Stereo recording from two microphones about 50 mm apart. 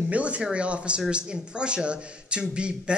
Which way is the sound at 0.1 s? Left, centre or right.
Right.